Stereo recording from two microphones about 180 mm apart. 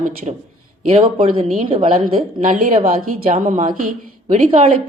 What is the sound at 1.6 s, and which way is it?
Speech, 30° right (ahead or behind).